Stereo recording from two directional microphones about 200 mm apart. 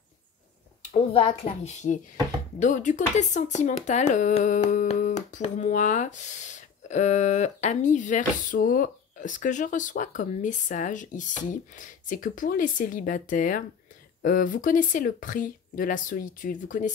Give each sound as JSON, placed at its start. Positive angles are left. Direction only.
{"t": 1.4, "sound": "speech", "side_deg": 35}